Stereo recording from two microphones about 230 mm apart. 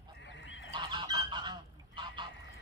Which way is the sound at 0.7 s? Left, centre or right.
Centre.